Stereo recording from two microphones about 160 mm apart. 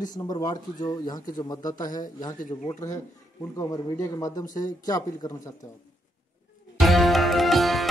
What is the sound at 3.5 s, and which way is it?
Speech, 20° left (ahead or behind).